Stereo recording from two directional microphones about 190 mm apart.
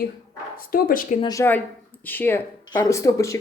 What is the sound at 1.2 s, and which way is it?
A woman's voice, 15° left (ahead or behind).